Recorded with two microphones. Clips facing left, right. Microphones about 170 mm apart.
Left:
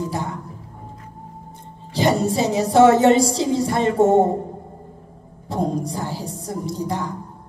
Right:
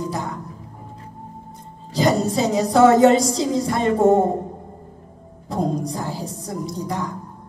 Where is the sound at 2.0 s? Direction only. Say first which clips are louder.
Even; 30° left (ahead or behind).